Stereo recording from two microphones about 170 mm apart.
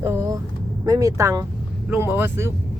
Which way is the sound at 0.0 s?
15° right (ahead or behind).